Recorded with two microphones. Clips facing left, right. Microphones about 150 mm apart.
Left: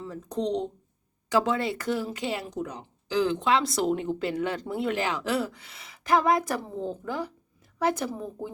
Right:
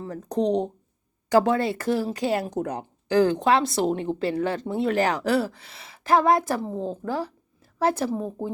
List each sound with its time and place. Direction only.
0.0 s speech: 45° right (ahead or behind)
1.3 s speech: 35° right (ahead or behind)